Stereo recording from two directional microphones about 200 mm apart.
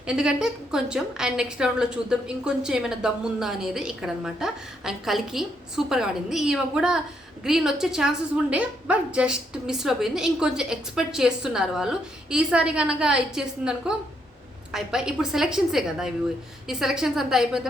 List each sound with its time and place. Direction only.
0.0 s a woman's voice: 5° right (ahead or behind)